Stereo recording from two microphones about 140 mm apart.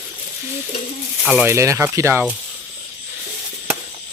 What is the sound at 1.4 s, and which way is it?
Speech, 20° right (ahead or behind).